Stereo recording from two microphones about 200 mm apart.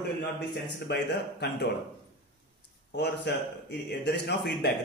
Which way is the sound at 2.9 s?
55° left (ahead or behind).